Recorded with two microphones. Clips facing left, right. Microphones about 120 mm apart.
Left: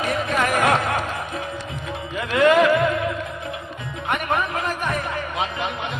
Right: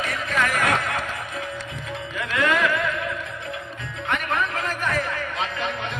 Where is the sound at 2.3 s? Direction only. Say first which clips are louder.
Left 7 dB; 30° left (ahead or behind).